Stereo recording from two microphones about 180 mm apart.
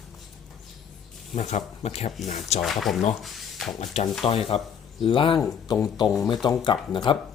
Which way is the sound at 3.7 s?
40° left (ahead or behind).